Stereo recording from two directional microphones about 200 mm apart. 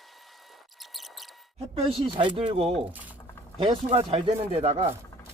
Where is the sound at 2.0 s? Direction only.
25° right (ahead or behind).